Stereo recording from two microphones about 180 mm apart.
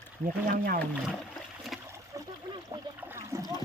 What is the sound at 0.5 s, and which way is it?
Speech, 50° right (ahead or behind).